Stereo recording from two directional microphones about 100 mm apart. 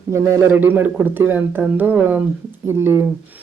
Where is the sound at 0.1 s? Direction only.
30° right (ahead or behind).